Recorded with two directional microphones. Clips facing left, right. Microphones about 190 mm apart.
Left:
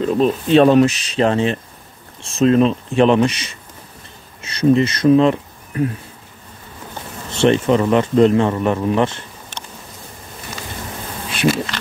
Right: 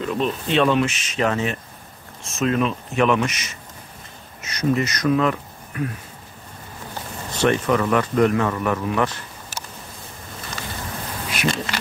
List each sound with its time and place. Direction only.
0.0 s speech: 35° left (ahead or behind)
7.3 s speech: 25° left (ahead or behind)
11.4 s bee: 30° left (ahead or behind)